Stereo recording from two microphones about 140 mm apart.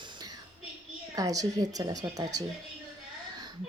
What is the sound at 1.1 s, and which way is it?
A woman's voice, 25° right (ahead or behind).